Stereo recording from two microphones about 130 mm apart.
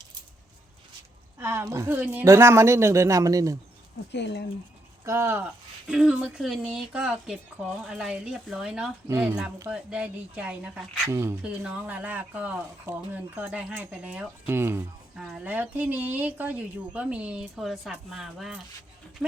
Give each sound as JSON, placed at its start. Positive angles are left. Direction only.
{"t": 1.4, "sound": "speech", "side_deg": -20}
{"t": 5.0, "sound": "speech", "side_deg": -20}
{"t": 5.9, "sound": "a woman's voice", "side_deg": -5}
{"t": 11.1, "sound": "speech", "side_deg": -20}
{"t": 11.4, "sound": "speech", "side_deg": -10}
{"t": 15.1, "sound": "a woman's voice", "side_deg": -5}